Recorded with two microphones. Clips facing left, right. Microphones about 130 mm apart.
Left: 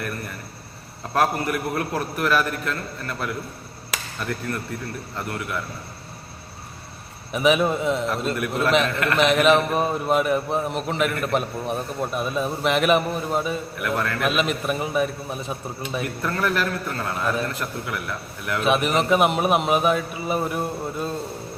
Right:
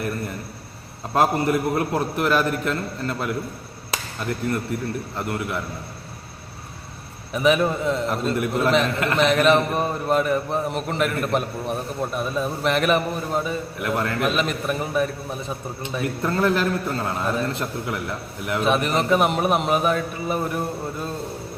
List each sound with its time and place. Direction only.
1.1 s a man's voice: 25° right (ahead or behind)
7.3 s a man's voice: 5° left (ahead or behind)
8.1 s a man's voice: 25° right (ahead or behind)
9.1 s a man's voice: 5° left (ahead or behind)
13.7 s a man's voice: 25° right (ahead or behind)
14.3 s a man's voice: 5° left (ahead or behind)
16.0 s a man's voice: 25° right (ahead or behind)
18.6 s a man's voice: 5° left (ahead or behind)